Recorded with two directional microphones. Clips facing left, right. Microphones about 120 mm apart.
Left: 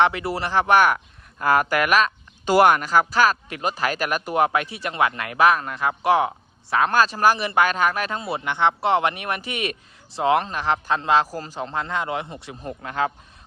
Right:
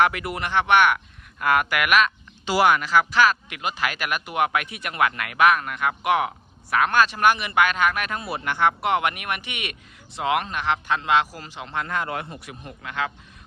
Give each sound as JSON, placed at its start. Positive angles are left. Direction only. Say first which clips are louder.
{"t": 0.0, "sound": "speech", "louder": "left 2 dB", "side_deg": 30}
{"t": 11.9, "sound": "a man's voice", "louder": "left 2 dB", "side_deg": 20}